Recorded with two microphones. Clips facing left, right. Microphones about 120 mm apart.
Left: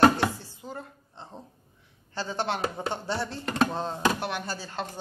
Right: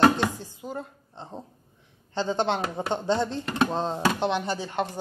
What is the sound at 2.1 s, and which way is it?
Speech, 20° right (ahead or behind).